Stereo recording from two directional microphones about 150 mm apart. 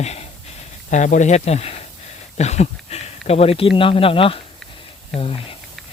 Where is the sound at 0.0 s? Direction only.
45° left (ahead or behind).